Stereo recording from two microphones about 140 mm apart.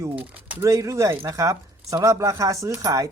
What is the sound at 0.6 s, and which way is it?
Speech, 25° right (ahead or behind).